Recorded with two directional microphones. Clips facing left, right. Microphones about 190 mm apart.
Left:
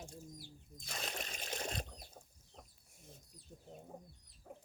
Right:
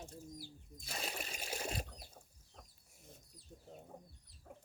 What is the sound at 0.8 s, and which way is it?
Sewing machine, 5° right (ahead or behind).